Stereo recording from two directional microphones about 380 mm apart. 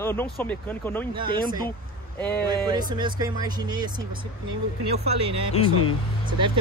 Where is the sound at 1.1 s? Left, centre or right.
Centre.